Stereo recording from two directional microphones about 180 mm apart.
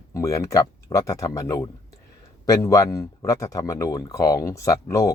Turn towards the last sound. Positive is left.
turn(degrees=20)  # may be behind; listen again after turning